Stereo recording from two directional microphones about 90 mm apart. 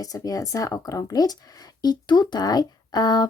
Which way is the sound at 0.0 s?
40° left (ahead or behind).